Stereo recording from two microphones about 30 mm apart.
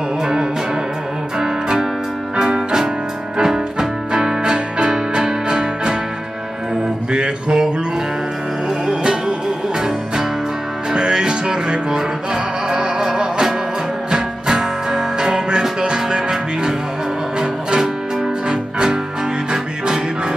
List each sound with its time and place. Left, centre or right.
0.2 s music: centre
7.1 s mantra: right
8.8 s music: centre
10.9 s music: right